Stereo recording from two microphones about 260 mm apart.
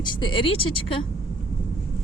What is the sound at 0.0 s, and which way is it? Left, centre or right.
A woman's voice, centre.